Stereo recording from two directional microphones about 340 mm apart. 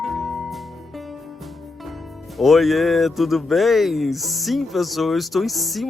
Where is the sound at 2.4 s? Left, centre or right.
Centre.